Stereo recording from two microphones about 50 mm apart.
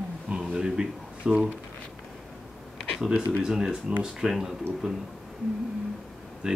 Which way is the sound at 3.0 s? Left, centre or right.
Centre.